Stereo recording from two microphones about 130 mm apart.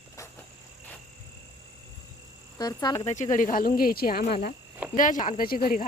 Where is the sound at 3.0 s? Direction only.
65° left (ahead or behind).